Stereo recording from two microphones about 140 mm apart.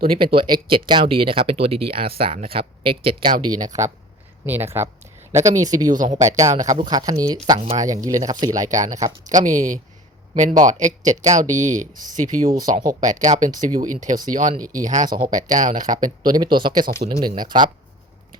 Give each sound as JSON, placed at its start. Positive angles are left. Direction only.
{"t": 0.0, "sound": "speech", "side_deg": -90}
{"t": 0.9, "sound": "speech", "side_deg": -35}
{"t": 5.9, "sound": "speech", "side_deg": -65}
{"t": 6.3, "sound": "speech", "side_deg": -25}
{"t": 8.6, "sound": "speech", "side_deg": -60}
{"t": 16.2, "sound": "speech", "side_deg": -30}